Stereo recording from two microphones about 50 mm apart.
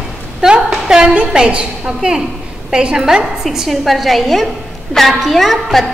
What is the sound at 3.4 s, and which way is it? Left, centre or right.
A woman's voice, centre.